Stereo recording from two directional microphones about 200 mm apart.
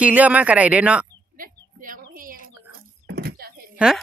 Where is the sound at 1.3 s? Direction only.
45° right (ahead or behind).